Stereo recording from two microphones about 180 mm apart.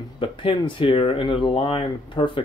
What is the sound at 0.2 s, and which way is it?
Speech, 30° left (ahead or behind).